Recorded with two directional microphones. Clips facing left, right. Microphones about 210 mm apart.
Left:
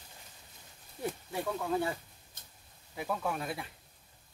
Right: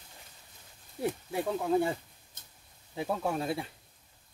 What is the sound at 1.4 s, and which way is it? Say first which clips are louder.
Speech: right 4 dB; 20° right (ahead or behind).